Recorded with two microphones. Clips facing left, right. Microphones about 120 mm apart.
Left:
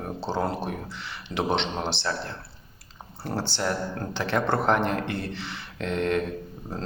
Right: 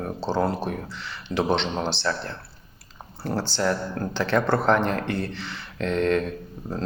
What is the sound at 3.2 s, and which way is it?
Speech, 20° left (ahead or behind).